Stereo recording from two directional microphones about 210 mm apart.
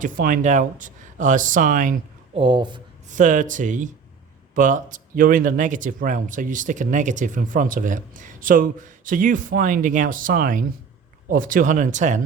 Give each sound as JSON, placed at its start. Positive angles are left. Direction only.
{"t": 0.0, "sound": "speech", "side_deg": -40}
{"t": 2.3, "sound": "speech", "side_deg": -25}
{"t": 3.1, "sound": "speech", "side_deg": -40}